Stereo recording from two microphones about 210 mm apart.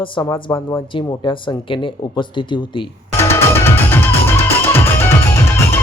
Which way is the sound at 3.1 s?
10° left (ahead or behind).